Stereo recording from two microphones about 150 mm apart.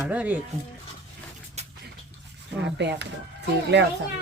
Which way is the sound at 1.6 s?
45° right (ahead or behind).